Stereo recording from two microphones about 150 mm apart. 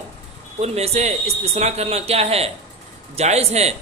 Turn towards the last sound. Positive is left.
turn(degrees=-45)  # may be behind; listen again after turning